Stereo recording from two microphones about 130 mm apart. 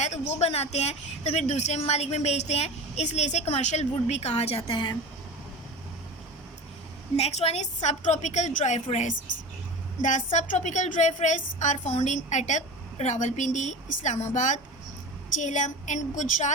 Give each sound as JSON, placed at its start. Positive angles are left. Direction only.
{"t": 0.0, "sound": "speech", "side_deg": 60}
{"t": 4.7, "sound": "speech", "side_deg": 40}
{"t": 7.2, "sound": "a woman's voice", "side_deg": 55}